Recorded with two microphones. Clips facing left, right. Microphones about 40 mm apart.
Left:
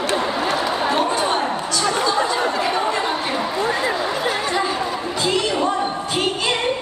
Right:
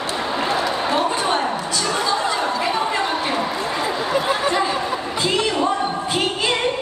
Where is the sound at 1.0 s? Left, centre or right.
Centre.